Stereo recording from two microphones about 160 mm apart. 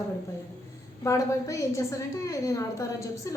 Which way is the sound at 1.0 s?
20° left (ahead or behind).